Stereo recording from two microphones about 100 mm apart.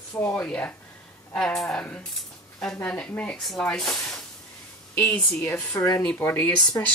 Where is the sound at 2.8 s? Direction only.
10° left (ahead or behind).